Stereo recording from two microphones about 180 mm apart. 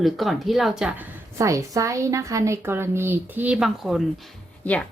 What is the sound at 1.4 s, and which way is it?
A woman's voice, 15° right (ahead or behind).